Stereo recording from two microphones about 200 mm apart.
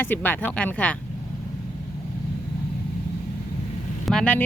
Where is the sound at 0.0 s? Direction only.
10° left (ahead or behind).